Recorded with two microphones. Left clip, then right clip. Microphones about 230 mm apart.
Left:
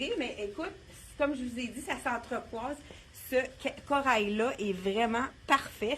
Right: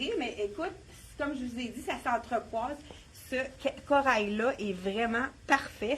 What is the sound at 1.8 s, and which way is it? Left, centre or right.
Speech, left.